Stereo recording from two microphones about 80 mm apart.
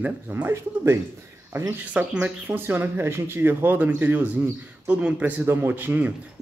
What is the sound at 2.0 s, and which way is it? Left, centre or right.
Speech, centre.